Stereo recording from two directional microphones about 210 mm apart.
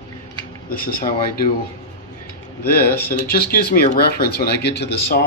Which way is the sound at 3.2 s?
45° left (ahead or behind).